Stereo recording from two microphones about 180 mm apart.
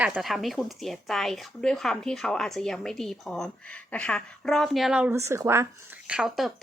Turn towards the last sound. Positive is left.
turn(degrees=-5)  # may be behind; listen again after turning